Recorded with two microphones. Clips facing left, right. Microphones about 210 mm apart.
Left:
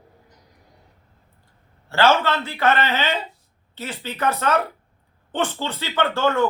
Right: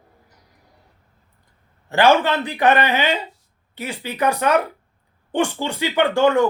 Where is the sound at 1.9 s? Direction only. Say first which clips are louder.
Right 3 dB; 15° right (ahead or behind).